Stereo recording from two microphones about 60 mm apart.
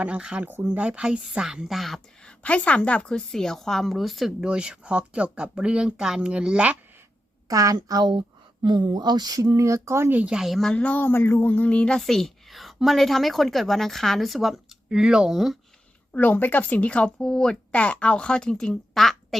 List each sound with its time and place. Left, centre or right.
0.0 s speech: right
0.4 s speech: right
0.8 s speech: centre
1.6 s a woman's voice: centre
2.2 s a woman's voice: left; by 4.4 s centre
4.4 s speech: centre
7.4 s a woman's voice: right
9.3 s speech: right
10.6 s a woman's voice: centre
10.8 s speech: left
11.9 s a woman's voice: centre
16.1 s speech: left; by 18.8 s centre
18.9 s a sound: centre